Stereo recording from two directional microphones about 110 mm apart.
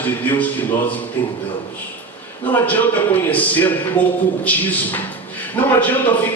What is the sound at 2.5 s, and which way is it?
Speech, 15° left (ahead or behind).